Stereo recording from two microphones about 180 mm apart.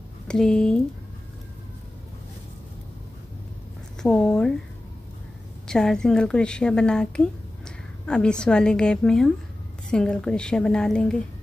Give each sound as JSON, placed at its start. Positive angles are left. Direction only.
{"t": 0.3, "sound": "a woman's voice", "side_deg": 5}
{"t": 4.0, "sound": "a woman's voice", "side_deg": 5}
{"t": 5.7, "sound": "a woman's voice", "side_deg": 5}